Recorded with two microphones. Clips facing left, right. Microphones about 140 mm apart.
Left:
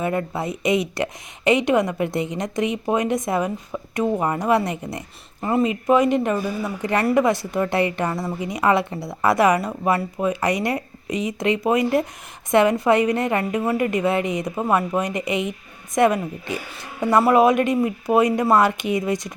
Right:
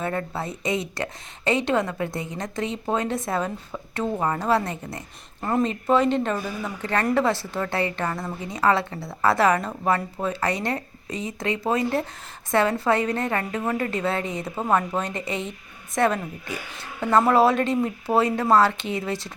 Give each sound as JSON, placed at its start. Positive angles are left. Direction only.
{"t": 0.0, "sound": "a woman's voice", "side_deg": 15}
{"t": 5.4, "sound": "a woman's voice", "side_deg": 5}